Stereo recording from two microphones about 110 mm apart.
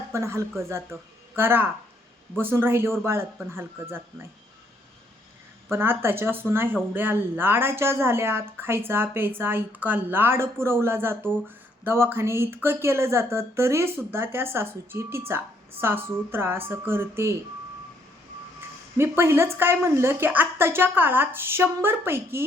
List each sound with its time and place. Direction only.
0.1 s a woman's voice: 25° right (ahead or behind)
5.7 s a woman's voice: 20° right (ahead or behind)
18.9 s a woman's voice: 20° right (ahead or behind)